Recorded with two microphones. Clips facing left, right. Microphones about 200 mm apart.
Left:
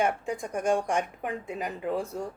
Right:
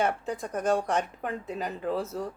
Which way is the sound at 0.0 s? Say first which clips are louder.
Left 1 dB; 10° left (ahead or behind).